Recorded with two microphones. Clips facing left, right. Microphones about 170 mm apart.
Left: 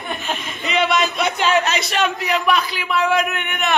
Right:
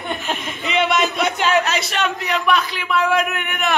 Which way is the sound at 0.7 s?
20° right (ahead or behind).